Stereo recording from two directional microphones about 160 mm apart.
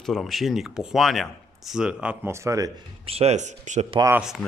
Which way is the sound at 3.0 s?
40° right (ahead or behind).